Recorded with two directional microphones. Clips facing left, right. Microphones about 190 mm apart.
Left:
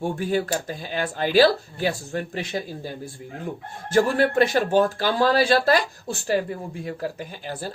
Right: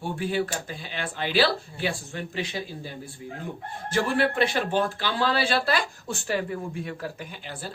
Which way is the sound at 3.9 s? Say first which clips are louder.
Left 5 dB; 40° left (ahead or behind).